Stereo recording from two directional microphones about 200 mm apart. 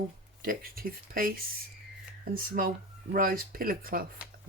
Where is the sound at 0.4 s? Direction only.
45° right (ahead or behind).